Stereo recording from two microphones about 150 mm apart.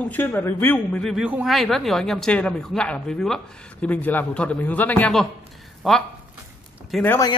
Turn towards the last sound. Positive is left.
turn(degrees=25)  # may be behind; listen again after turning